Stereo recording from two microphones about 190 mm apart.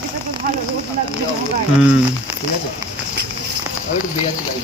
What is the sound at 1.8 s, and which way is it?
Speech, 5° right (ahead or behind).